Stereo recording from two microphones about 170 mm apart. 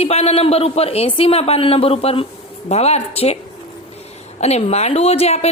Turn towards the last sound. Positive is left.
turn(degrees=35)  # may be behind; listen again after turning